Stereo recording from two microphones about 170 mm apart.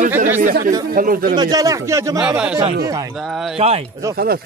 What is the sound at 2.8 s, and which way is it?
Speech, 20° right (ahead or behind).